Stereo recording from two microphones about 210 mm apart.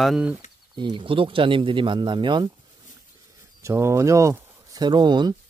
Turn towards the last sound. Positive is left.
turn(degrees=-20)  # may be behind; listen again after turning